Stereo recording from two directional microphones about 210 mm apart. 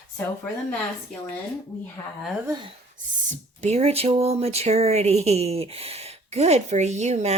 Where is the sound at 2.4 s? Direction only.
20° right (ahead or behind).